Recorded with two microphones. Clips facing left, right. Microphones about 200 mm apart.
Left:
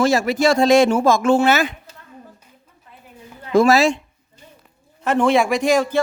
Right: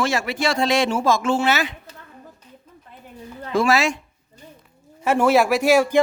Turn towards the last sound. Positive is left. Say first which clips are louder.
# right 1 dB
turn(degrees=-10)  # may be behind; listen again after turning